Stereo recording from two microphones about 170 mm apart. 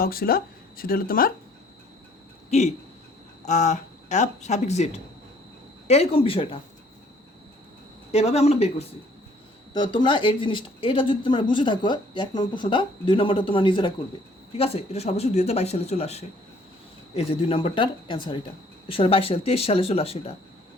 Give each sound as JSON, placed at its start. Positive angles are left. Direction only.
{"t": 0.0, "sound": "speech", "side_deg": 60}
{"t": 2.5, "sound": "speech", "side_deg": 40}
{"t": 8.1, "sound": "speech", "side_deg": 35}
{"t": 9.7, "sound": "speech", "side_deg": 25}